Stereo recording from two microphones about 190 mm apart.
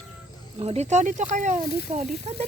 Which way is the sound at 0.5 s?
30° right (ahead or behind).